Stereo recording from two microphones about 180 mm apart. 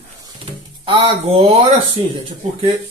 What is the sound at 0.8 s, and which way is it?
Speech, 30° right (ahead or behind).